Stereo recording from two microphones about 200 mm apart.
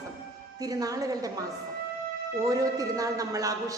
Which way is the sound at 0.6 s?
15° right (ahead or behind).